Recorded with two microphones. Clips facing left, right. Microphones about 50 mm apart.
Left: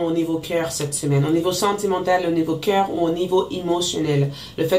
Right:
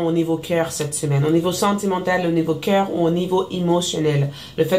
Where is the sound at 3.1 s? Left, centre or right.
Right.